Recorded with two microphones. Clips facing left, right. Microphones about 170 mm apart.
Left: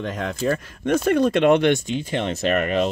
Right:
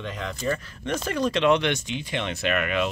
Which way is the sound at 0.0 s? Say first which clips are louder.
Left 5 dB; 45° left (ahead or behind).